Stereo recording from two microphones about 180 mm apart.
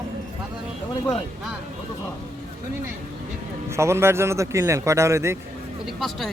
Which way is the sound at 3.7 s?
15° right (ahead or behind).